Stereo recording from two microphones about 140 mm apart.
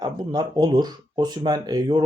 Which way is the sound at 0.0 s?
30° right (ahead or behind).